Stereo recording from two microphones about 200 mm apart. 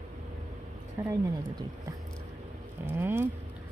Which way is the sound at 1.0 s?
15° right (ahead or behind).